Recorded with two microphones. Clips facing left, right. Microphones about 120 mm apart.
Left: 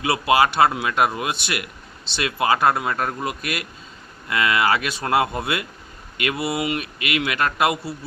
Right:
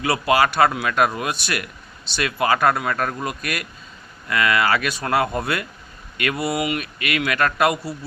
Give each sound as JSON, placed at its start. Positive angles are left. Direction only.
{"t": 0.0, "sound": "a man's voice", "side_deg": 25}